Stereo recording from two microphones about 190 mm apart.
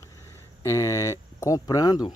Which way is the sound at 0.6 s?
15° left (ahead or behind).